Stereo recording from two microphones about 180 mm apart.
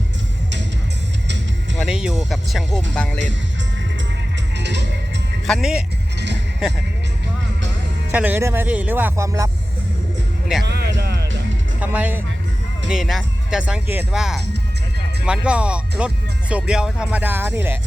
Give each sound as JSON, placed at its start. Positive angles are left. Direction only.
{"t": 1.8, "sound": "speech", "side_deg": -5}
{"t": 4.5, "sound": "music", "side_deg": -75}
{"t": 5.5, "sound": "speech", "side_deg": 0}
{"t": 8.1, "sound": "speech", "side_deg": -10}
{"t": 10.6, "sound": "music", "side_deg": -65}
{"t": 11.8, "sound": "speech", "side_deg": -10}